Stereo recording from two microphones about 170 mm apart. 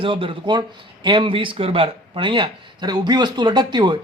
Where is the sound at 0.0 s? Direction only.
30° right (ahead or behind).